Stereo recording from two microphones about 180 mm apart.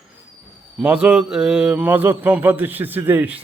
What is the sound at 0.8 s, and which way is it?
A man's voice, 5° right (ahead or behind).